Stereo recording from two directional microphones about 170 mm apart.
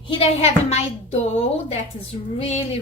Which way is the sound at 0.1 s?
35° left (ahead or behind).